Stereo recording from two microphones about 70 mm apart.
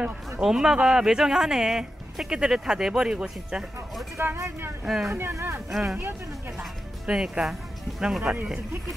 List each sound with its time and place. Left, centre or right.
0.4 s speech: centre
4.2 s speech: right
4.8 s speech: centre
5.3 s speech: right
5.7 s speech: centre